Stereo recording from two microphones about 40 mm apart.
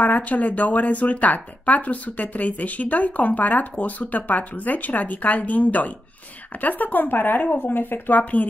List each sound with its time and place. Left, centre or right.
0.0 s speech: left